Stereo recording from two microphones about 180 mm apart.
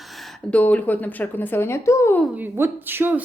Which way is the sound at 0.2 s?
5° left (ahead or behind).